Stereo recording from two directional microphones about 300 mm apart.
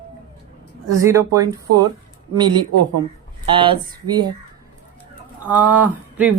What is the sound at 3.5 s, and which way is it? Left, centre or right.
Speech, centre.